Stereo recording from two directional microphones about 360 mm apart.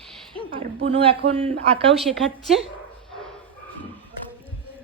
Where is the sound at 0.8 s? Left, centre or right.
Centre.